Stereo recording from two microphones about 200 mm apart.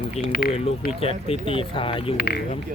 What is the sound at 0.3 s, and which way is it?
Speech, 50° left (ahead or behind).